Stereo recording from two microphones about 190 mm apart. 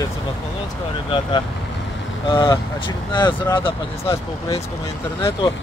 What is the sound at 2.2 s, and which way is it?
Speech, 25° left (ahead or behind).